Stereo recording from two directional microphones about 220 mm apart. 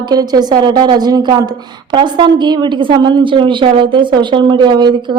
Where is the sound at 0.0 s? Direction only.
20° right (ahead or behind).